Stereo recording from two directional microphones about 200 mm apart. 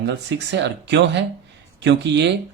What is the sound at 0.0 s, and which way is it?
Speech, 60° right (ahead or behind).